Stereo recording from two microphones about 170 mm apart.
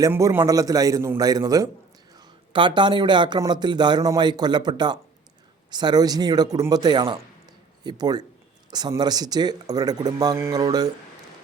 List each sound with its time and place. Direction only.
0.0 s speech: 20° right (ahead or behind)